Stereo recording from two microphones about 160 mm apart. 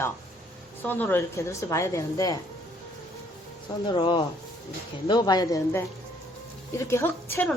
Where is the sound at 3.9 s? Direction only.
30° left (ahead or behind).